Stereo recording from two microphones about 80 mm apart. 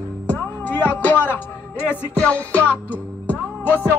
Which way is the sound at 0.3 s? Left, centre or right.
Centre.